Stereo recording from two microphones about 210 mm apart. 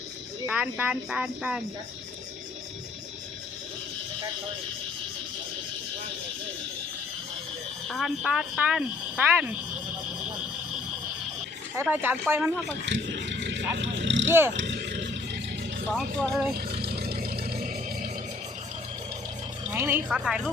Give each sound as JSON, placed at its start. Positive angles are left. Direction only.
{"t": 0.4, "sound": "speech", "side_deg": -5}
{"t": 7.9, "sound": "speech", "side_deg": 0}
{"t": 11.8, "sound": "speech", "side_deg": -10}
{"t": 12.8, "sound": "a sound", "side_deg": -60}
{"t": 14.3, "sound": "speech", "side_deg": -10}
{"t": 14.5, "sound": "roar", "side_deg": -60}
{"t": 15.9, "sound": "speech", "side_deg": 5}
{"t": 16.6, "sound": "vehicle", "side_deg": -45}
{"t": 19.6, "sound": "speech", "side_deg": -10}